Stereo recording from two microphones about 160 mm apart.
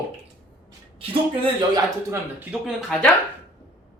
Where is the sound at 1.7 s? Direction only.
20° right (ahead or behind).